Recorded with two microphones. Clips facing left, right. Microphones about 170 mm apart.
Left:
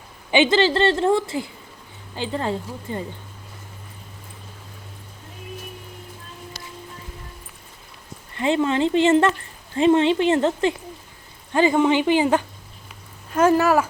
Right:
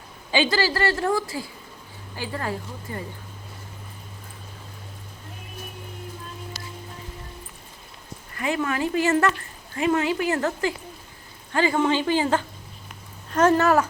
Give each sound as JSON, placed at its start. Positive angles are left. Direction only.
{"t": 0.3, "sound": "a woman's voice", "side_deg": 20}
{"t": 8.4, "sound": "a woman's voice", "side_deg": 25}